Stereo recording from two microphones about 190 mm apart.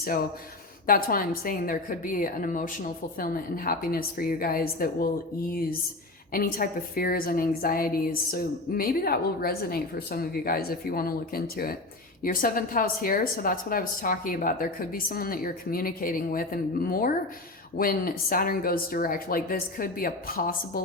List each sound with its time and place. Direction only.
0.0 s a woman's voice: 50° left (ahead or behind)
6.3 s a woman's voice: 50° left (ahead or behind)